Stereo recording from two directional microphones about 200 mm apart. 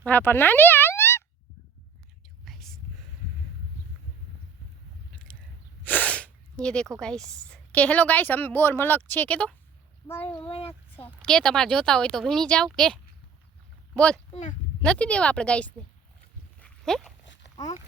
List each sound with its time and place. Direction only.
0.0 s boing: 10° left (ahead or behind)
2.4 s whispering: centre (ahead or behind)
5.3 s gasp: 10° left (ahead or behind)
5.8 s sneeze: 10° left (ahead or behind)
7.0 s speech: 5° left (ahead or behind)
10.1 s speech: 30° left (ahead or behind)
11.2 s speech: 5° left (ahead or behind)
16.6 s a sound: 5° left (ahead or behind)
17.3 s a sound: 65° left (ahead or behind)